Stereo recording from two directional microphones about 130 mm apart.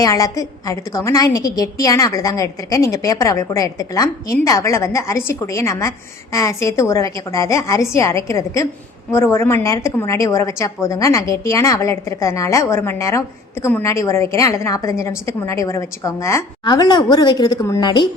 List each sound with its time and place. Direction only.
0.0 s a woman's voice: 25° left (ahead or behind)